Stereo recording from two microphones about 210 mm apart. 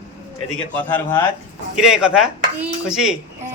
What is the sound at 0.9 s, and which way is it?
Speech, 10° left (ahead or behind).